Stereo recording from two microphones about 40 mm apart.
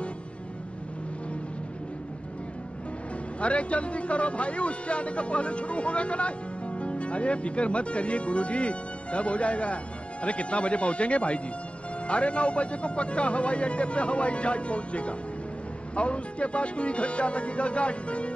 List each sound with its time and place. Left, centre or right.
3.3 s speech: left